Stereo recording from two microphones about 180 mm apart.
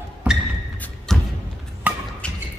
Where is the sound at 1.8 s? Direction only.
10° right (ahead or behind).